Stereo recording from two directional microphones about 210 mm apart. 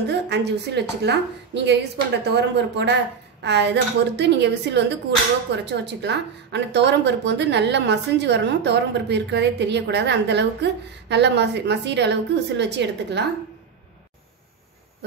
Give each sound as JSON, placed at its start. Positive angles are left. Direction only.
{"t": 0.1, "sound": "speech", "side_deg": -55}